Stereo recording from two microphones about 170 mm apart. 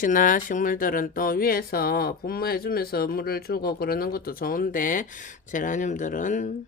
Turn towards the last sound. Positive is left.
turn(degrees=45)  # may be behind; listen again after turning